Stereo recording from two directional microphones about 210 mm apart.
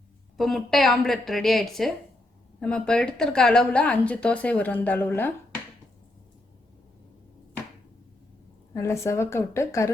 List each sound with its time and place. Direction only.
0.3 s a woman's voice: centre (ahead or behind)
8.7 s a woman's voice: 15° left (ahead or behind)